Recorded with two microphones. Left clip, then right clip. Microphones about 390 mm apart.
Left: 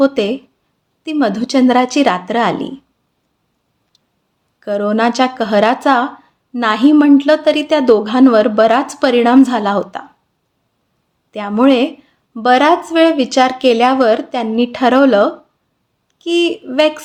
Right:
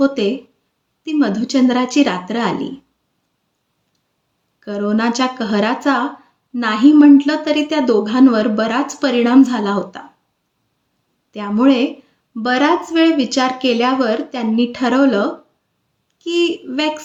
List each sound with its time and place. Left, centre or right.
0.0 s a woman's voice: left
4.6 s a woman's voice: left
11.3 s a woman's voice: left